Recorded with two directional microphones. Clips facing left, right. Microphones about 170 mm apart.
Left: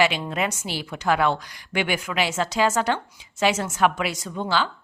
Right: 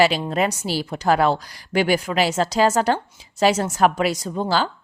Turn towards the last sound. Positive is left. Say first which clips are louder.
# right 3 dB
turn(degrees=-40)  # may be behind; listen again after turning